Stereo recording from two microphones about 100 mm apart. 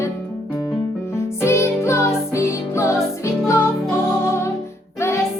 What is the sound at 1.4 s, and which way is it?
Music, 25° left (ahead or behind).